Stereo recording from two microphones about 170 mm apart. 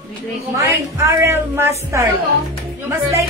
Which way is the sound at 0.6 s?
20° right (ahead or behind).